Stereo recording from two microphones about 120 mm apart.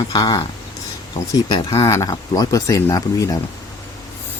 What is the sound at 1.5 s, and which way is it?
Speech, 30° left (ahead or behind).